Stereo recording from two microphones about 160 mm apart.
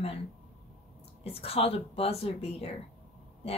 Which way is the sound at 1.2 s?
40° left (ahead or behind).